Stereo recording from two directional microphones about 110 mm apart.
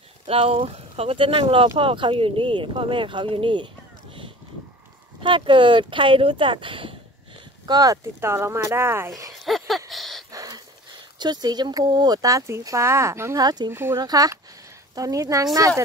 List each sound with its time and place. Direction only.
0.3 s speech: 60° right (ahead or behind)
5.2 s speech: 50° right (ahead or behind)
7.6 s speech: 35° right (ahead or behind)
9.4 s a sound: centre (ahead or behind)
10.3 s a sound: 30° right (ahead or behind)
11.1 s speech: 40° right (ahead or behind)
13.7 s speech: 25° right (ahead or behind)
14.0 s speech: 35° right (ahead or behind)